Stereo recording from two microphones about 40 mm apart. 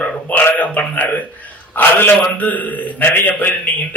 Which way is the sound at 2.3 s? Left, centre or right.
Left.